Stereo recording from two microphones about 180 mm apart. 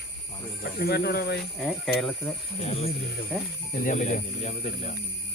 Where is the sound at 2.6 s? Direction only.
35° left (ahead or behind).